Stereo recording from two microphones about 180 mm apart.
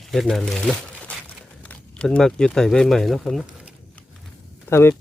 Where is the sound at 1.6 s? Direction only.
5° left (ahead or behind).